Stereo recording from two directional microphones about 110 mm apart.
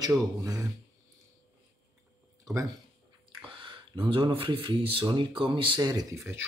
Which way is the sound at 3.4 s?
50° right (ahead or behind).